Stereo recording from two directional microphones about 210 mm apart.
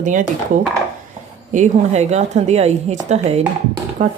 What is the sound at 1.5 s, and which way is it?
Speech, 35° right (ahead or behind).